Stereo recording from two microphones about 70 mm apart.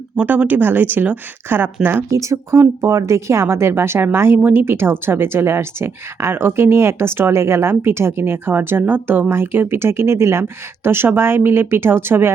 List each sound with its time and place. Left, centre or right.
0.2 s speech: right
2.0 s speech: right